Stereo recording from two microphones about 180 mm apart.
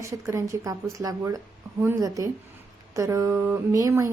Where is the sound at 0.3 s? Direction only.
15° right (ahead or behind).